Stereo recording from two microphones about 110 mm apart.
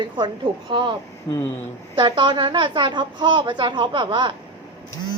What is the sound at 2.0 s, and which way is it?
A woman's voice, 45° right (ahead or behind).